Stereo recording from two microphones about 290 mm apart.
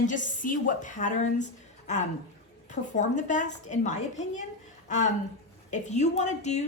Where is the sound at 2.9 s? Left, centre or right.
Left.